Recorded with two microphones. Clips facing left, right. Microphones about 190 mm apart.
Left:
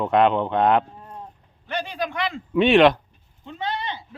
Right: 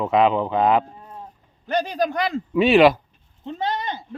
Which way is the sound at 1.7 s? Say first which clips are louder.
Right 6 dB; 40° right (ahead or behind).